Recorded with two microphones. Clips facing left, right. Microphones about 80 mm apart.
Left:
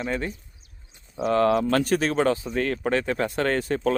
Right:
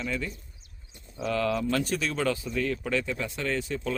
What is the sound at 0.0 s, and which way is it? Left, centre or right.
Speech, left.